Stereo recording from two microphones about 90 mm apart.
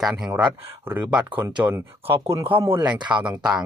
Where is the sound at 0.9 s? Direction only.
20° right (ahead or behind).